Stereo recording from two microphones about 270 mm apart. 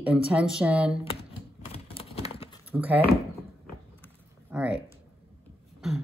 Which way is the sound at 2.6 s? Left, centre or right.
Centre.